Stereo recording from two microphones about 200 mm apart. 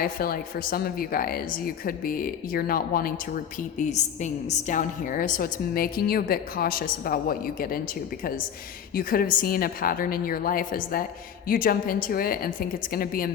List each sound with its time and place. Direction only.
0.0 s speech: 45° left (ahead or behind)
9.0 s speech: 45° left (ahead or behind)